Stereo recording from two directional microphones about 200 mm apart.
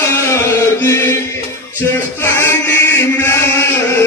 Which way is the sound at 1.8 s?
10° left (ahead or behind).